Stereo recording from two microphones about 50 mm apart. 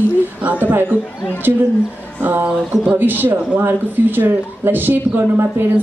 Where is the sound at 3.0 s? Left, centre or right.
Right.